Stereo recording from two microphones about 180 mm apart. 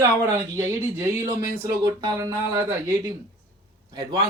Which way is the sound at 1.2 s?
20° right (ahead or behind).